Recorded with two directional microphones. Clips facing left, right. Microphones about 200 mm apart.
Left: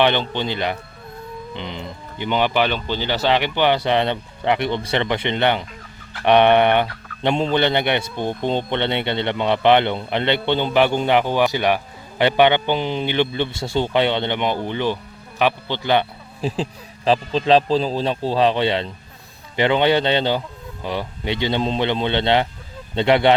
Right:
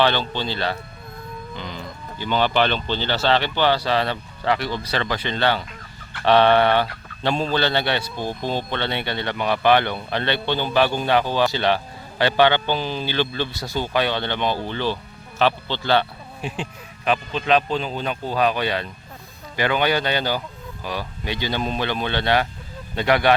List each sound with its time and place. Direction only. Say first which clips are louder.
0.0 s a man's voice: left 2 dB; 20° left (ahead or behind)
16.4 s a man's voice: left 6 dB; 35° left (ahead or behind)